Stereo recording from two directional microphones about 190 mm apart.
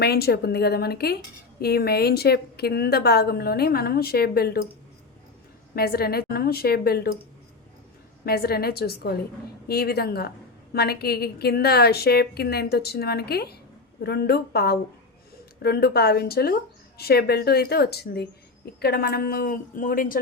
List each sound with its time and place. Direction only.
0.0 s a woman's voice: 60° left (ahead or behind)
5.7 s a woman's voice: 55° left (ahead or behind)
8.2 s a woman's voice: 55° left (ahead or behind)